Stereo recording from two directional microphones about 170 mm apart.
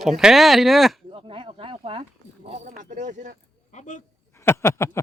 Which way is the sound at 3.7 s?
45° left (ahead or behind).